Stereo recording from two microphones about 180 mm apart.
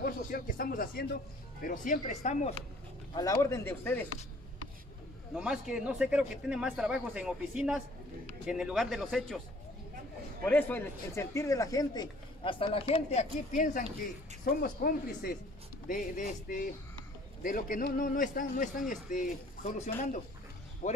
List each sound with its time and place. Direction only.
0.0 s a man's voice: 50° left (ahead or behind)
3.2 s speech: 15° left (ahead or behind)
5.3 s speech: 5° right (ahead or behind)
10.4 s a man's voice: 10° left (ahead or behind); by 21.0 s 40° left (ahead or behind)